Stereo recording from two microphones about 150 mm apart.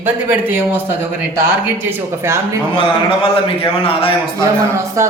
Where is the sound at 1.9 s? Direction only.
15° right (ahead or behind).